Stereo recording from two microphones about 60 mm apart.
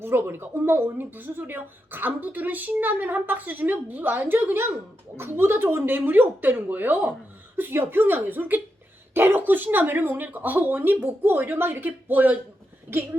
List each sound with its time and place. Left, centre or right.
0.0 s speech: right
7.5 s speech: right
12.9 s speech: right